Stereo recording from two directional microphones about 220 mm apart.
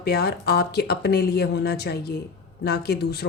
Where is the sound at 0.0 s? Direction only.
45° left (ahead or behind).